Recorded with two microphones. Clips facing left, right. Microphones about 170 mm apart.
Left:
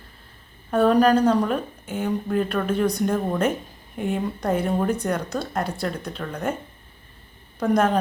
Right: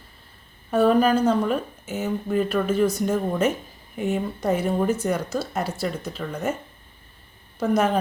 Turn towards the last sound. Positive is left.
turn(degrees=-5)  # may be behind; listen again after turning